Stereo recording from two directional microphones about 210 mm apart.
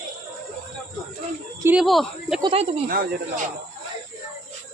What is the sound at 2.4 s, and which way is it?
Speech, 25° right (ahead or behind).